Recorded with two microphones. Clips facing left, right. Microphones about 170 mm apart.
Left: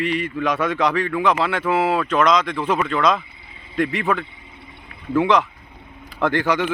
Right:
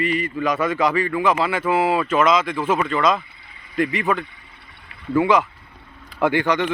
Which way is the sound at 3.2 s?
20° left (ahead or behind).